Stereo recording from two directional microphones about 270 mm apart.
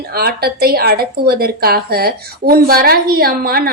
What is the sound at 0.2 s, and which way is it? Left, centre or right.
Speech, right.